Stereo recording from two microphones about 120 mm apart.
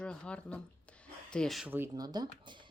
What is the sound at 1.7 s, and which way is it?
Speech, 20° right (ahead or behind).